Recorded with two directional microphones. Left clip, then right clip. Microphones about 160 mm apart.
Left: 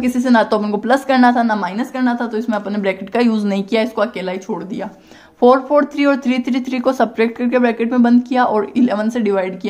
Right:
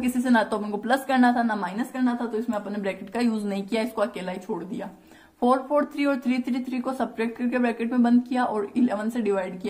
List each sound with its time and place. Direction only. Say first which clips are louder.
0.0 s a woman's voice: left 8 dB; 15° left (ahead or behind)